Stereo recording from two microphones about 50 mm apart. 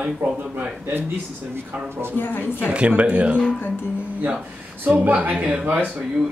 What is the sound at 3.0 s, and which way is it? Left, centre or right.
Speech, right.